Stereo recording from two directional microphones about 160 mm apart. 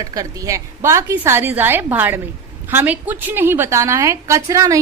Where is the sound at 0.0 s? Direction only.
20° right (ahead or behind).